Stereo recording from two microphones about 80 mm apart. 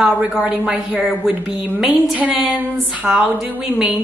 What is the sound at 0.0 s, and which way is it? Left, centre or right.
A woman's voice, centre.